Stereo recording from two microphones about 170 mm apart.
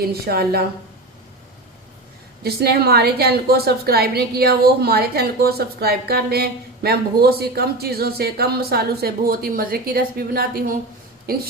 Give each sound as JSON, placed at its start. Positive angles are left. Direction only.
{"t": 0.0, "sound": "a woman's voice", "side_deg": -65}
{"t": 2.4, "sound": "a woman's voice", "side_deg": -70}